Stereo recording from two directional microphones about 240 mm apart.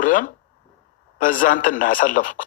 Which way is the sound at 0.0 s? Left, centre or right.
Left.